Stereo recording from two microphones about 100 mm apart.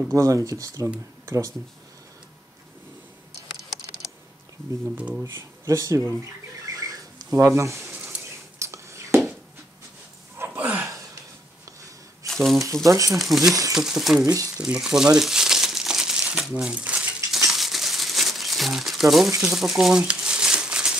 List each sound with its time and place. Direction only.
0.0 s speech: 35° right (ahead or behind)
4.9 s speech: 15° right (ahead or behind)
5.2 s speech: 30° right (ahead or behind)
6.6 s a sound: 35° right (ahead or behind)
10.3 s a sound: 20° right (ahead or behind)
12.3 s speech: centre (ahead or behind)
12.8 s speech: 35° right (ahead or behind)
13.2 s speech: centre (ahead or behind)
13.5 s speech: 35° right (ahead or behind)
13.7 s speech: centre (ahead or behind)
14.2 s speech: 35° right (ahead or behind)
14.6 s crumpling: 5° right (ahead or behind)